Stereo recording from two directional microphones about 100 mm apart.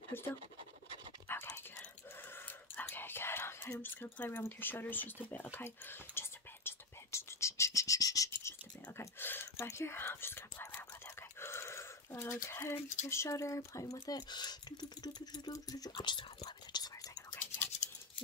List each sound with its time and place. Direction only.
0.1 s speech: 25° left (ahead or behind)
1.3 s a sound: 20° left (ahead or behind)
2.3 s whispering: 20° left (ahead or behind)
11.3 s speech: 25° left (ahead or behind)
15.9 s speech: 50° left (ahead or behind)
16.4 s whispering: 45° left (ahead or behind)